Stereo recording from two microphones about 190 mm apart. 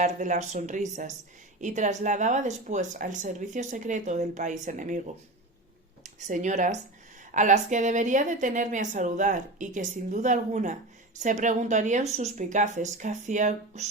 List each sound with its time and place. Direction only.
0.0 s a woman's voice: 40° right (ahead or behind)
6.1 s a woman's voice: 40° right (ahead or behind)